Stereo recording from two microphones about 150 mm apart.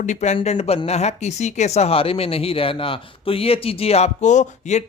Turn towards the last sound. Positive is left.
turn(degrees=50)  # may be behind; listen again after turning